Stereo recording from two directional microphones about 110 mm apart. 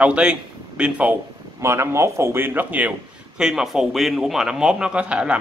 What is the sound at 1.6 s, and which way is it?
Speech, 25° right (ahead or behind).